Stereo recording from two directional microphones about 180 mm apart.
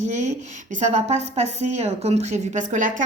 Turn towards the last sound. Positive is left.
turn(degrees=-45)  # may be behind; listen again after turning